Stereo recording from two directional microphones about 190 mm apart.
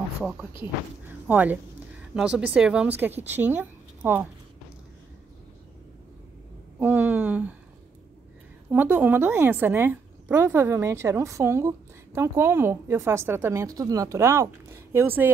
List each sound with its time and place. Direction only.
0.2 s speech: 5° right (ahead or behind)
6.8 s a sound: 10° right (ahead or behind)
8.6 s a woman's voice: 10° right (ahead or behind)